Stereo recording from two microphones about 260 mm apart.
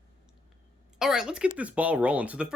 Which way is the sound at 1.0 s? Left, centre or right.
Centre.